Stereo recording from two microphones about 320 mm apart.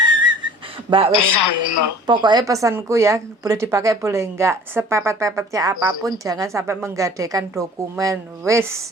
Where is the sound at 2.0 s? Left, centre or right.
Centre.